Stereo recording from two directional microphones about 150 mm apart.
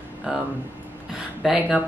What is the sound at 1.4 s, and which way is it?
Speech, 5° right (ahead or behind).